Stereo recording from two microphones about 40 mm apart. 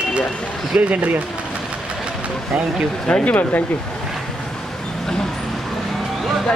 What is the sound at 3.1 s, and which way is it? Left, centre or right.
Speech, left.